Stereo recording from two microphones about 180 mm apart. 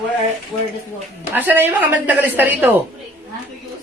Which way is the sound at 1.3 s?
10° right (ahead or behind).